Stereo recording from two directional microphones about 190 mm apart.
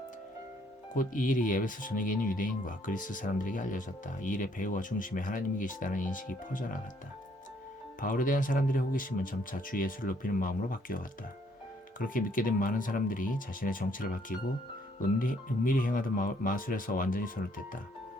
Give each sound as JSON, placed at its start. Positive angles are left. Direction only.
{"t": 0.9, "sound": "speech", "side_deg": 45}
{"t": 8.0, "sound": "speech", "side_deg": 45}